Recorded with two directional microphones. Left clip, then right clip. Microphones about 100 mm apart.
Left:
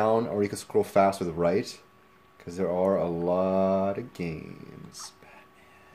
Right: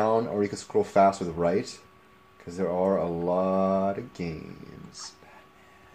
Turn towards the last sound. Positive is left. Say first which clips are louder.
# right 1 dB
turn(degrees=30)  # may be behind; listen again after turning